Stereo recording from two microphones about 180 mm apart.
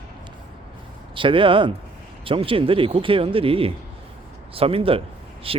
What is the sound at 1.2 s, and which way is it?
Speech, 30° right (ahead or behind).